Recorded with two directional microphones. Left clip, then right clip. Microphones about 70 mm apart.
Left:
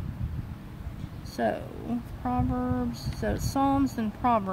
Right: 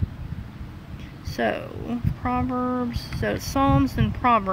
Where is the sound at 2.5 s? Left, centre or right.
Right.